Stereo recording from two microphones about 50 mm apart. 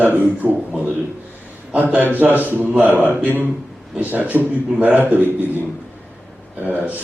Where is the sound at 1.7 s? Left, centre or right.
Right.